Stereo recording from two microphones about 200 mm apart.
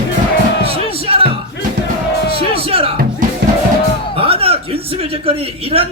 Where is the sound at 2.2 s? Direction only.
50° left (ahead or behind).